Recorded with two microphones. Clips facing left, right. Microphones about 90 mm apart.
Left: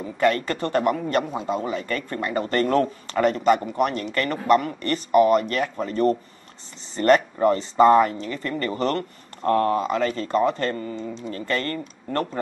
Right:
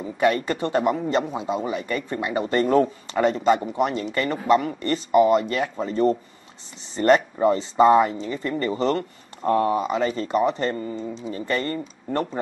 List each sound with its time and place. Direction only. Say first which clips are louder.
0.0 s speech: even; 15° right (ahead or behind)
4.1 s speech: even; 15° right (ahead or behind)
4.4 s speech: left 1 dB; 5° right (ahead or behind)
5.4 s speech: even; 10° right (ahead or behind)
8.8 s speech: right 1 dB; 5° right (ahead or behind)
11.1 s speech: right 1 dB; 5° right (ahead or behind)
11.4 s speech: right 1 dB; 15° right (ahead or behind)